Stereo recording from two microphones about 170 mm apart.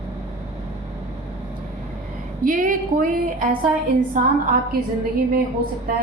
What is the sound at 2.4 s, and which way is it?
A woman's voice, 50° right (ahead or behind).